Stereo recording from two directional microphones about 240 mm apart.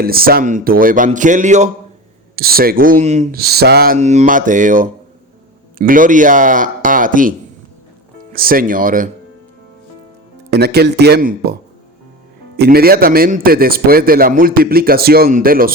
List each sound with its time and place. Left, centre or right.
0.0 s a man's voice: right
10.5 s speech: right
12.5 s a man's voice: right